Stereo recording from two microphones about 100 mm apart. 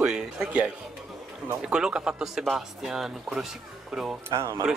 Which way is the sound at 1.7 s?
10° right (ahead or behind).